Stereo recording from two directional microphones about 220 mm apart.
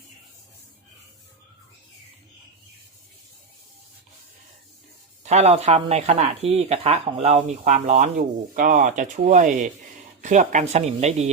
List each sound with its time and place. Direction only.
5.2 s speech: 30° right (ahead or behind)